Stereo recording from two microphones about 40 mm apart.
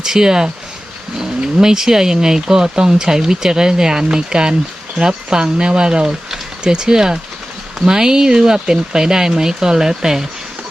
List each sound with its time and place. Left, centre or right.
0.0 s speech: centre